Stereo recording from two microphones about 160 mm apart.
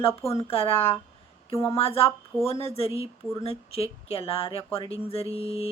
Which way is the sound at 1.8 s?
35° left (ahead or behind).